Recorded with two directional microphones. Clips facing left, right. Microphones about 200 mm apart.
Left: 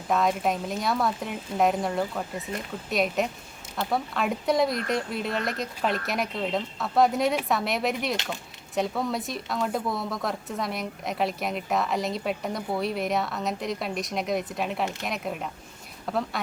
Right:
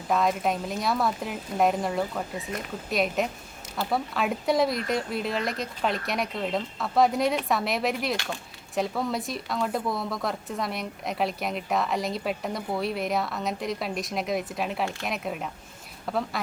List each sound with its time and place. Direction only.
0.1 s speech: centre (ahead or behind)
2.5 s speech: 30° left (ahead or behind)
2.9 s speech: centre (ahead or behind)